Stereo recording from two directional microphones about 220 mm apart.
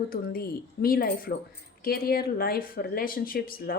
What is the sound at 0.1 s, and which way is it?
Speech, 40° left (ahead or behind).